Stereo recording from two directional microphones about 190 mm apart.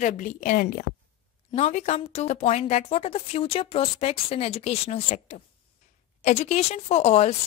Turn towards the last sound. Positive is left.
turn(degrees=35)  # may be behind; listen again after turning